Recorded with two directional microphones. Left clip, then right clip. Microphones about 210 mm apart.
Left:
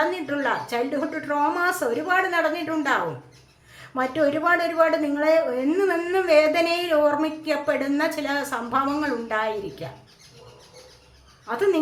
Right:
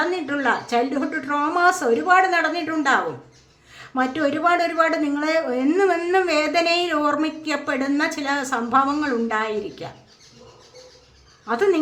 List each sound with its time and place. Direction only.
0.1 s a sound: 15° right (ahead or behind)
1.5 s a woman's voice: 20° right (ahead or behind)
3.9 s a woman's voice: 20° right (ahead or behind)
11.4 s a woman's voice: 20° right (ahead or behind)